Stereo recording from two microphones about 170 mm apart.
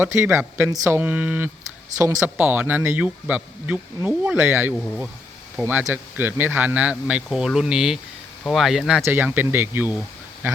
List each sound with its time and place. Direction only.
0.0 s speech: 15° right (ahead or behind)
9.0 s speech: 10° right (ahead or behind)